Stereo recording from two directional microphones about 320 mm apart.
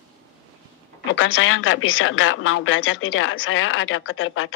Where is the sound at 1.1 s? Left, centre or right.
Left.